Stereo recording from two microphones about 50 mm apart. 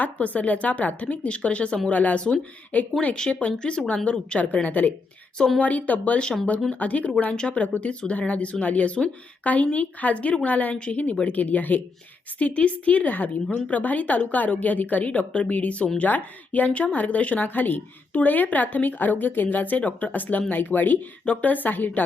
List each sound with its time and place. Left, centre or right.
0.0 s speech: left
3.6 s speech: centre; by 22.0 s left